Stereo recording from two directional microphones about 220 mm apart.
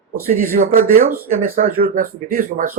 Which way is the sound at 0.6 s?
40° right (ahead or behind).